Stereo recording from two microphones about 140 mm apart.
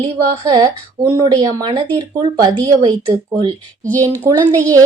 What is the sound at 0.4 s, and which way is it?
A woman's voice, 30° right (ahead or behind).